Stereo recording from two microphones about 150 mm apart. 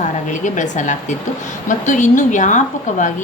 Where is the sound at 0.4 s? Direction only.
55° left (ahead or behind).